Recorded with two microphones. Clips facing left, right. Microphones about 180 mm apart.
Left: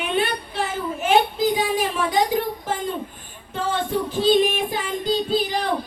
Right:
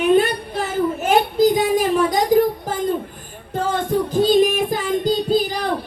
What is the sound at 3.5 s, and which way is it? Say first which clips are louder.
Child singing: right 4 dB; 40° right (ahead or behind).